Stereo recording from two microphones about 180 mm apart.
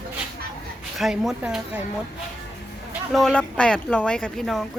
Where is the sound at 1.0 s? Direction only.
Centre (ahead or behind).